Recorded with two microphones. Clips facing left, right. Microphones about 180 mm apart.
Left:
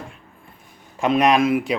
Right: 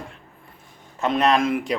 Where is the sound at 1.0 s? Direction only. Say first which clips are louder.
Left 3 dB; 10° left (ahead or behind).